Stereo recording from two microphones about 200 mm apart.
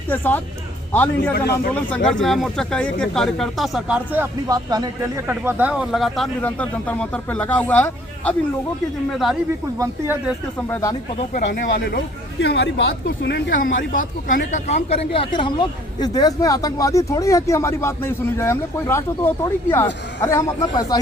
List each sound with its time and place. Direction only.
0.1 s speech: 10° left (ahead or behind); by 5.2 s 20° right (ahead or behind)
5.3 s speech: 10° right (ahead or behind)
9.7 s speech: 15° right (ahead or behind)
10.7 s speech: 15° left (ahead or behind)
11.3 s speech: 40° left (ahead or behind)
12.4 s speech: 60° left (ahead or behind); by 21.0 s 20° left (ahead or behind)